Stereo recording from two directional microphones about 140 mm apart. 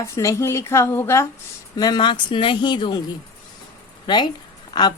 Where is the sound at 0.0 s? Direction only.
20° left (ahead or behind).